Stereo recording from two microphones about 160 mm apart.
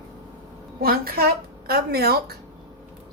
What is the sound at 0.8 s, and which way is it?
Speech, 70° right (ahead or behind).